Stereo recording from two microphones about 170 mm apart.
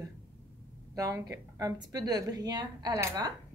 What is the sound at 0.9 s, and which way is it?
A woman's voice, 20° right (ahead or behind).